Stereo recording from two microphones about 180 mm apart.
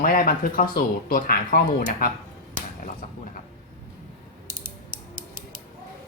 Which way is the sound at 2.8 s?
45° left (ahead or behind).